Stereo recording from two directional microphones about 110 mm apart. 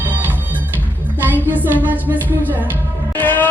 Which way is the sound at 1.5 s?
15° right (ahead or behind).